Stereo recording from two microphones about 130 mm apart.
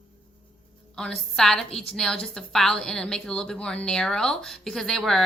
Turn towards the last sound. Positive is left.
turn(degrees=5)  # may be behind; listen again after turning